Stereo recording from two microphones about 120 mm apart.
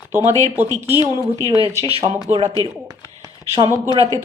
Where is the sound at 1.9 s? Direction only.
55° right (ahead or behind).